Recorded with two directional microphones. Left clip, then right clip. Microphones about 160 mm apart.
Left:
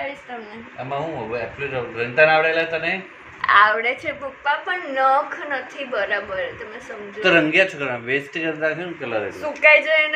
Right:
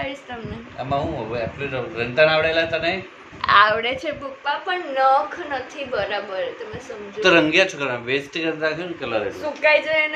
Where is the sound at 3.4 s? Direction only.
20° right (ahead or behind).